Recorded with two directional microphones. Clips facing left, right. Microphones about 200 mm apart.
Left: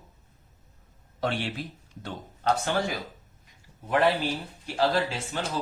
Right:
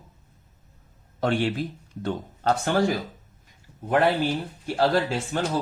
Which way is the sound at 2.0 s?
50° right (ahead or behind).